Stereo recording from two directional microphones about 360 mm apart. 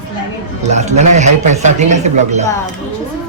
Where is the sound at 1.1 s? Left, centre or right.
Centre.